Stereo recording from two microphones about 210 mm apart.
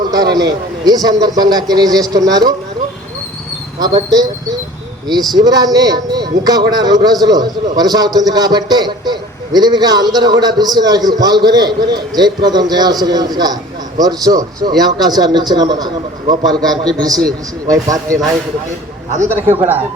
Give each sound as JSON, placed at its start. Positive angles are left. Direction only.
{"t": 0.1, "sound": "a man's voice", "side_deg": -20}
{"t": 3.8, "sound": "a man's voice", "side_deg": -20}
{"t": 5.3, "sound": "a man's voice", "side_deg": -20}